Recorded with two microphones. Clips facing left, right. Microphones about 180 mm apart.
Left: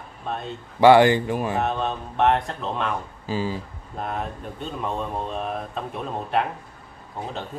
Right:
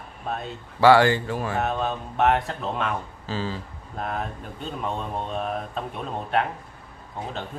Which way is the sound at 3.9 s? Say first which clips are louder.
Left 1 dB; centre (ahead or behind).